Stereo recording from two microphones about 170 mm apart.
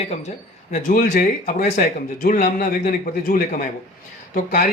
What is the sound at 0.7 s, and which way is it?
A man's voice, 55° left (ahead or behind).